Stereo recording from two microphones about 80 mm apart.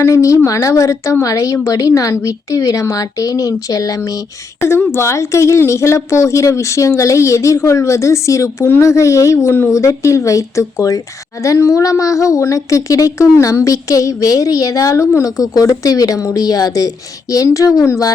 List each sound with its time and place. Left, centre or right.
0.0 s a woman's voice: left
4.9 s a woman's voice: left